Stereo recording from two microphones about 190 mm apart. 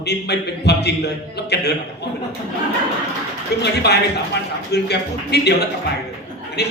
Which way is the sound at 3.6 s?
60° left (ahead or behind).